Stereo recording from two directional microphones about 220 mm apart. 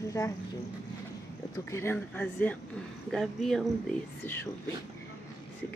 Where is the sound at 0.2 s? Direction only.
15° left (ahead or behind).